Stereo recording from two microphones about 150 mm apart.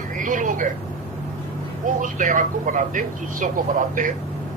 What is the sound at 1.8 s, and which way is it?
Speech, 60° right (ahead or behind).